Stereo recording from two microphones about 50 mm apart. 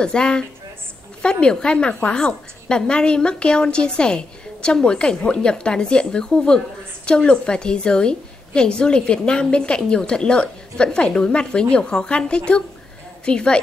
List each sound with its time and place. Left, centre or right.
0.0 s a woman's voice: centre